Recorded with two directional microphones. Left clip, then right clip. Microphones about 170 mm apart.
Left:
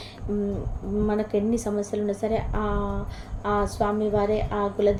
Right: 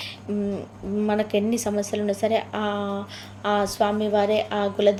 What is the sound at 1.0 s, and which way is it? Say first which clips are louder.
A woman's voice: right 2 dB; 25° right (ahead or behind).